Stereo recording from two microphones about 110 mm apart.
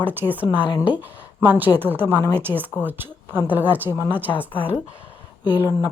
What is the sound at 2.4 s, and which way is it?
Speech, 20° right (ahead or behind).